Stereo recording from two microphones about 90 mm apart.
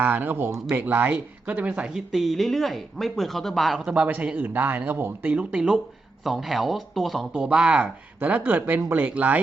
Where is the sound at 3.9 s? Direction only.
20° right (ahead or behind); by 7.2 s centre (ahead or behind).